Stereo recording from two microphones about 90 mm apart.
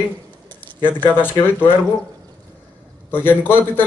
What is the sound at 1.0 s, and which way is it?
Speech, 20° left (ahead or behind).